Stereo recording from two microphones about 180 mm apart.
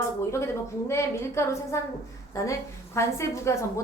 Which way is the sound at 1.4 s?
15° left (ahead or behind).